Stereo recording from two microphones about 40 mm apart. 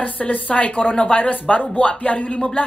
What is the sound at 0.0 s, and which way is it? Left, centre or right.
Speech, left.